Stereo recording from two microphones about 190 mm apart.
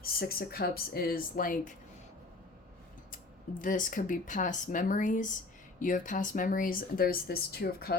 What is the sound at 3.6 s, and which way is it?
A woman's voice, 45° left (ahead or behind).